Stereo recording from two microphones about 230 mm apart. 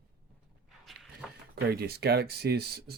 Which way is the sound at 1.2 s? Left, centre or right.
Centre.